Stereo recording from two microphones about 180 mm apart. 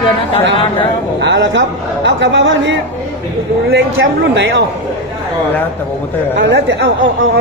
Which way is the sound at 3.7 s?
70° right (ahead or behind).